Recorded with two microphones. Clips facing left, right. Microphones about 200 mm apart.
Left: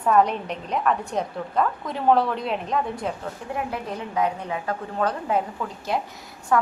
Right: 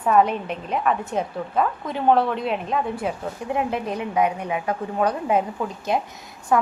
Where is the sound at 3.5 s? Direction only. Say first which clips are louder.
Right 5 dB; 20° right (ahead or behind).